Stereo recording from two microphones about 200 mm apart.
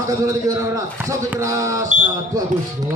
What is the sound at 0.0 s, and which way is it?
Speech, 15° right (ahead or behind).